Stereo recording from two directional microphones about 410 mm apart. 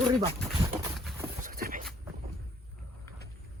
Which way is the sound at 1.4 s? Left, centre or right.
Right.